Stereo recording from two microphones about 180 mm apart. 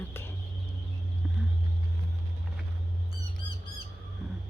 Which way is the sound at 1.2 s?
Centre (ahead or behind).